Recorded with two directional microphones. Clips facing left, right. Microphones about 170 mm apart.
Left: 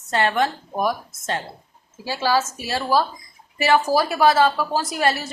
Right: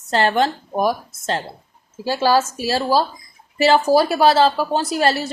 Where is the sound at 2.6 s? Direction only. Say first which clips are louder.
Right 3 dB; 30° right (ahead or behind).